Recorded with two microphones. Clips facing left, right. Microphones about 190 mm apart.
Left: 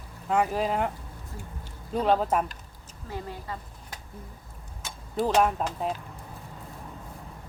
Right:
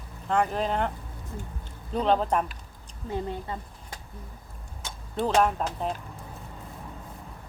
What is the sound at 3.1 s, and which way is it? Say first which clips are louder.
Speech: right 4 dB; 20° right (ahead or behind).